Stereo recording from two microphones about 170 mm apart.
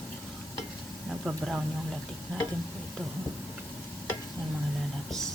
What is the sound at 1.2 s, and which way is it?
Speech, 5° right (ahead or behind).